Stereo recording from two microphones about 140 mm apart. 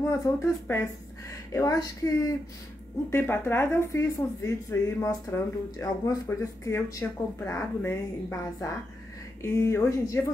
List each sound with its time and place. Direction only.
0.0 s speech: 20° left (ahead or behind)
9.4 s speech: 20° left (ahead or behind)